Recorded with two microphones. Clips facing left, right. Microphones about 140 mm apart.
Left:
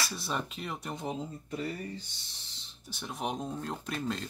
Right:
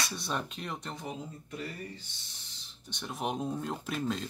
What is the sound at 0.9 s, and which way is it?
Speech, 25° left (ahead or behind).